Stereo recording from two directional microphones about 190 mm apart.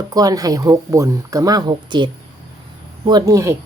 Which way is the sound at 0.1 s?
20° right (ahead or behind).